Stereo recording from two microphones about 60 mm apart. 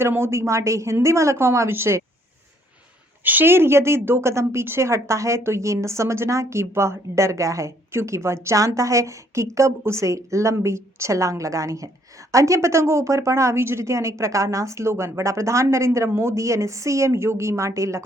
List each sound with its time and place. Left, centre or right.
0.0 s a woman's voice: right
3.2 s speech: right
17.6 s speech: right